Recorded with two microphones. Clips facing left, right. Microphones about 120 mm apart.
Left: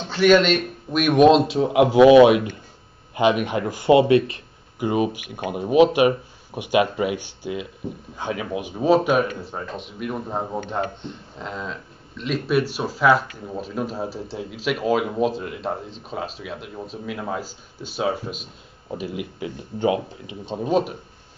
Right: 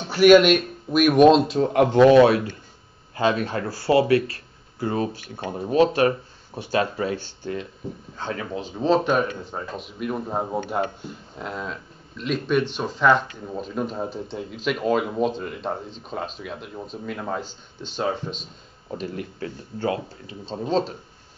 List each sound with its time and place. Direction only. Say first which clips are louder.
0.0 s speech: right 3 dB; 10° right (ahead or behind); by 20.9 s 10° left (ahead or behind)